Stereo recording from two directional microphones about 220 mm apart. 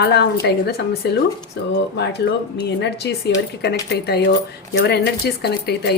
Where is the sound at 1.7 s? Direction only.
50° left (ahead or behind).